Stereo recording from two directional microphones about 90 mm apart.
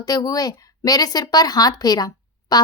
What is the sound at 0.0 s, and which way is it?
A woman's voice, 45° left (ahead or behind).